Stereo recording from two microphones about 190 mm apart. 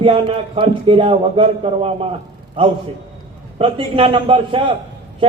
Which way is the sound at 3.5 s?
30° right (ahead or behind).